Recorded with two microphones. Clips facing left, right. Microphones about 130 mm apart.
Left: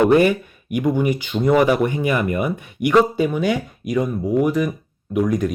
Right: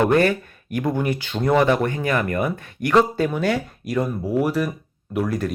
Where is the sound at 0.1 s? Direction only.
10° left (ahead or behind).